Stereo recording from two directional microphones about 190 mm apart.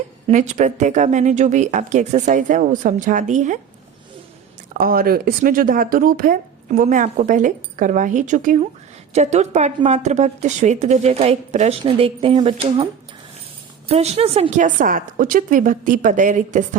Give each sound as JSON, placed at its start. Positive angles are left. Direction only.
{"t": 0.3, "sound": "a woman's voice", "side_deg": -40}
{"t": 4.8, "sound": "a woman's voice", "side_deg": -50}